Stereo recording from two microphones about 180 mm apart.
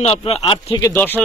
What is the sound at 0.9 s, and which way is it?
Speech, 10° left (ahead or behind).